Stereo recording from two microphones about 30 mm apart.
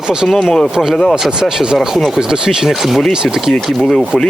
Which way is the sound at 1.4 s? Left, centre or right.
Right.